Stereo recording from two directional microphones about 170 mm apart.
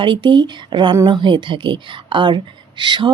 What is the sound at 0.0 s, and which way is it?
A woman's voice, 30° right (ahead or behind).